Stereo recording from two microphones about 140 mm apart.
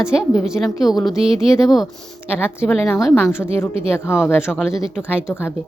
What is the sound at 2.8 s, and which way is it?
Speech, centre (ahead or behind).